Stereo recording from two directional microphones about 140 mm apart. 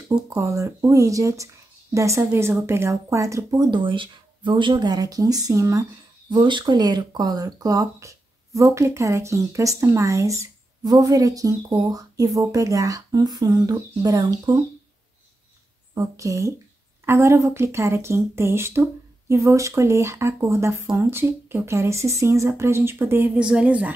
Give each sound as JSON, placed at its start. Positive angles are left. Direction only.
{"t": 0.4, "sound": "speech", "side_deg": -20}
{"t": 6.3, "sound": "speech", "side_deg": -35}
{"t": 15.9, "sound": "speech", "side_deg": -25}